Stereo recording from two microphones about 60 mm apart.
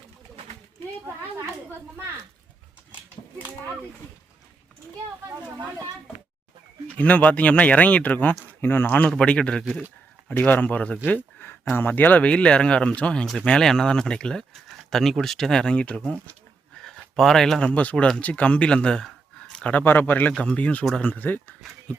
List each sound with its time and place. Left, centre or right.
6.8 s speech: left
9.0 s speech: centre
10.2 s speech: left
14.5 s speech: centre
16.7 s a sound: centre
17.2 s speech: centre
17.7 s speech: left
17.9 s speech: centre
18.2 s speech: left
19.8 s speech: left
20.4 s speech: left